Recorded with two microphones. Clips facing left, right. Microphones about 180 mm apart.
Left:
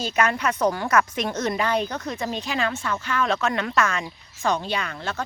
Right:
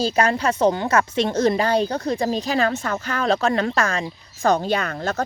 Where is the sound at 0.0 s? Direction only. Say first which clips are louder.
Right 4 dB; 35° right (ahead or behind).